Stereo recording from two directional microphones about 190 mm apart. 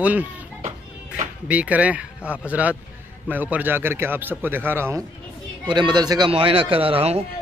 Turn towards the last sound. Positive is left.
turn(degrees=-30)  # may be behind; listen again after turning